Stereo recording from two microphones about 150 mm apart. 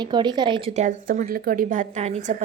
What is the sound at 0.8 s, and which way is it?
A woman's voice, 65° right (ahead or behind).